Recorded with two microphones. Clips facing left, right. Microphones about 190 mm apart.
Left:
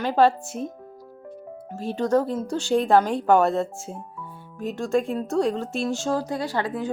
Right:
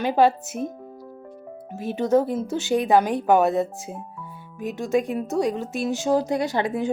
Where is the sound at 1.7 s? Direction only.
20° right (ahead or behind).